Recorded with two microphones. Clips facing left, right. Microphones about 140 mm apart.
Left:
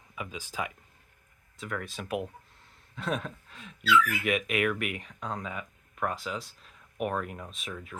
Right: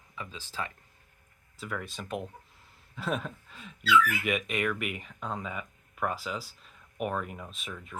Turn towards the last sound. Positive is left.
turn(degrees=0)  # may be behind; listen again after turning